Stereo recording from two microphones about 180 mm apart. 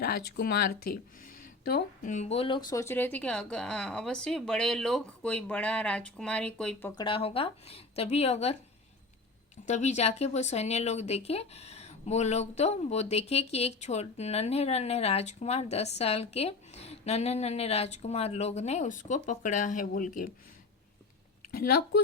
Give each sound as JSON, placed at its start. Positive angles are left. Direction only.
{"t": 0.0, "sound": "speech", "side_deg": 65}
{"t": 6.9, "sound": "speech", "side_deg": 30}
{"t": 9.6, "sound": "speech", "side_deg": 40}
{"t": 21.5, "sound": "speech", "side_deg": 55}